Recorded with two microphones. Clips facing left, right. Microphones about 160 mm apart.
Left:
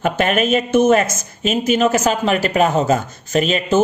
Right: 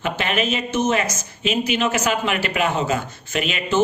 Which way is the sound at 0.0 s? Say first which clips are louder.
Left 6 dB; 50° left (ahead or behind).